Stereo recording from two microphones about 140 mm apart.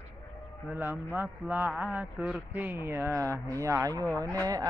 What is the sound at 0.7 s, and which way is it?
A man's voice, 15° right (ahead or behind).